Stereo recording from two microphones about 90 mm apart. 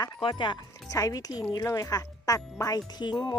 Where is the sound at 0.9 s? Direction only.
40° left (ahead or behind).